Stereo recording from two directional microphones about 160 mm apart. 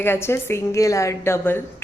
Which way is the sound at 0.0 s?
15° left (ahead or behind).